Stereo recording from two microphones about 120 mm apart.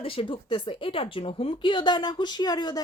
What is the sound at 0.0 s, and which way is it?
Speech, 50° left (ahead or behind).